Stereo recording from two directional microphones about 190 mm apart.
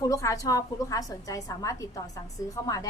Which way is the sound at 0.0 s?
15° left (ahead or behind).